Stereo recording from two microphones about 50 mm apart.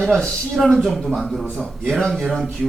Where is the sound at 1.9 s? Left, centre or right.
Centre.